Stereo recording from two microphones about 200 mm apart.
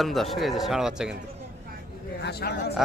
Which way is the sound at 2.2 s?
55° left (ahead or behind).